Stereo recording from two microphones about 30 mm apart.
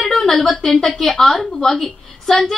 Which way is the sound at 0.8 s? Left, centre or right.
Centre.